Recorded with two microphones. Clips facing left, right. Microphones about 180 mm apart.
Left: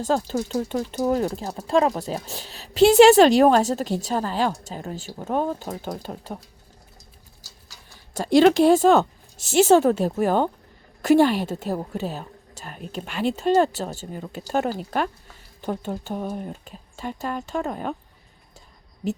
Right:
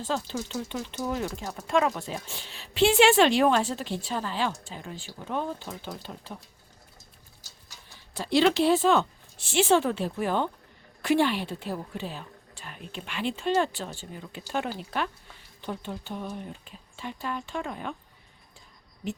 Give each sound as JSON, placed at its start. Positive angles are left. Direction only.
{"t": 0.0, "sound": "speech", "side_deg": 45}
{"t": 8.1, "sound": "a woman's voice", "side_deg": 45}